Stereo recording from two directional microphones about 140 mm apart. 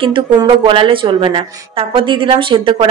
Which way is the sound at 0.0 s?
35° right (ahead or behind).